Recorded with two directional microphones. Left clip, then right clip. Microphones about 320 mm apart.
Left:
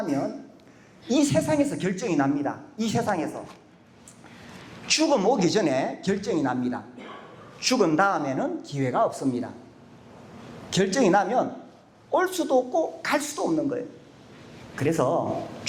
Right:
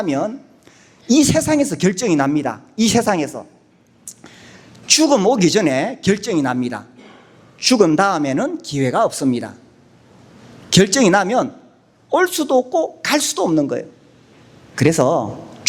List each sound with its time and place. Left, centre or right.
0.0 s speech: right
4.9 s a man's voice: right
10.7 s a man's voice: right